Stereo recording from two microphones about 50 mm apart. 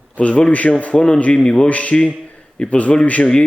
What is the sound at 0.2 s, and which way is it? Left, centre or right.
A man's voice, left.